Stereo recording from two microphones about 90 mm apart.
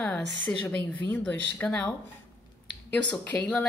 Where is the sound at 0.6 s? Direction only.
20° left (ahead or behind).